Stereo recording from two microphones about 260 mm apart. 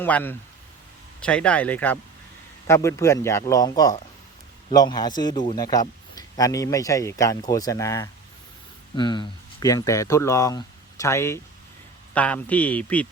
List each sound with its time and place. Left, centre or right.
0.0 s speech: centre